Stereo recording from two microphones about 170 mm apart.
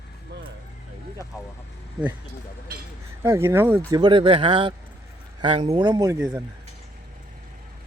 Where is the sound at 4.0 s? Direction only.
30° right (ahead or behind).